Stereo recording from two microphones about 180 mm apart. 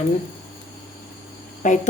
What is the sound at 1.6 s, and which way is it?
Speech, 45° left (ahead or behind).